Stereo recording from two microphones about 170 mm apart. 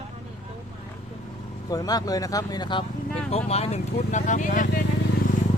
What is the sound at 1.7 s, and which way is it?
Speech, 20° left (ahead or behind).